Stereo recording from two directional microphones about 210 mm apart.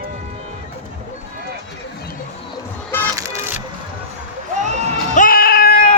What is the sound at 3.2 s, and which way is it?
Music, 15° right (ahead or behind).